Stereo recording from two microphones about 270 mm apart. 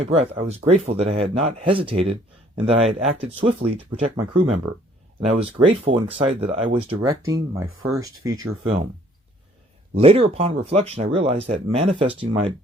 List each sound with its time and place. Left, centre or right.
0.1 s speech: right
9.9 s speech: right